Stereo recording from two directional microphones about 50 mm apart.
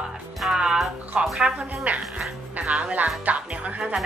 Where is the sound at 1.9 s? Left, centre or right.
Right.